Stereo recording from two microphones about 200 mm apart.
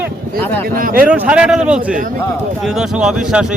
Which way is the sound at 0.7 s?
45° right (ahead or behind).